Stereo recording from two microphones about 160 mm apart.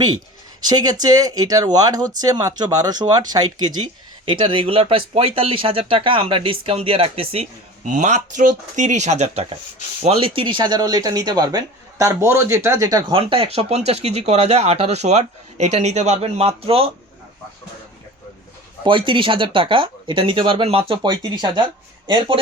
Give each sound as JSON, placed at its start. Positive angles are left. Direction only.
{"t": 0.6, "sound": "speech", "side_deg": -25}
{"t": 7.9, "sound": "speech", "side_deg": -50}
{"t": 18.9, "sound": "speech", "side_deg": -30}